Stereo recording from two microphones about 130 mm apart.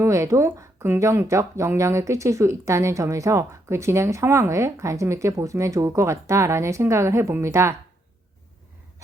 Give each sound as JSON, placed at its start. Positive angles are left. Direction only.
{"t": 0.0, "sound": "speech", "side_deg": -25}